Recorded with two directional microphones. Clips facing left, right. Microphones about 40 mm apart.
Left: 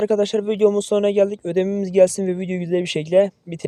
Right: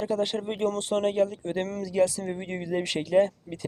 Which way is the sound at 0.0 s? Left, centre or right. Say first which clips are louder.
Left 9 dB; left.